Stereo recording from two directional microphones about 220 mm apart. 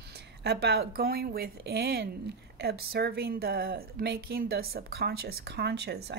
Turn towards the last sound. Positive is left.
turn(degrees=-45)  # may be behind; listen again after turning